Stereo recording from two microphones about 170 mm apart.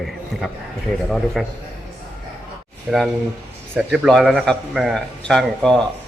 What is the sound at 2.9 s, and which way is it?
A man's voice, centre (ahead or behind).